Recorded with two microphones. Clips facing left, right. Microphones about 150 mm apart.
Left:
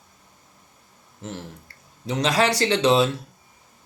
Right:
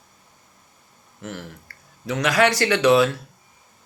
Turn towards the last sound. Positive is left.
turn(degrees=25)  # may be behind; listen again after turning